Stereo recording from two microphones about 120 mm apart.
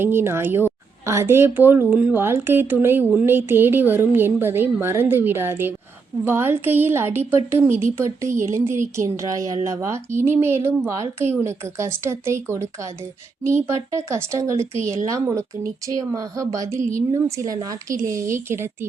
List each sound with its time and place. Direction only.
0.0 s a woman's voice: 20° right (ahead or behind)